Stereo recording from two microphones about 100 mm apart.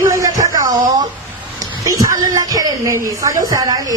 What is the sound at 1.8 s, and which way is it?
A woman's voice, 35° right (ahead or behind).